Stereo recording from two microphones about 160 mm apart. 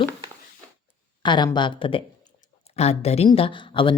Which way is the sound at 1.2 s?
30° left (ahead or behind).